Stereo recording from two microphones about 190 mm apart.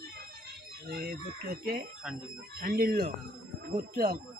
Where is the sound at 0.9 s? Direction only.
55° right (ahead or behind).